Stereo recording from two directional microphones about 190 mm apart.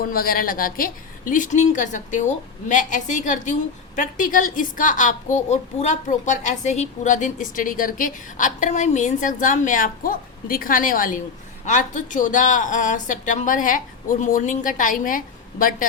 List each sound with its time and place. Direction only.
0.0 s a woman's voice: 50° left (ahead or behind)